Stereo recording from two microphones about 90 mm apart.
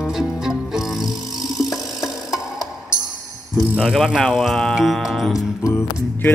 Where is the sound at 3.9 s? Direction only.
Centre (ahead or behind).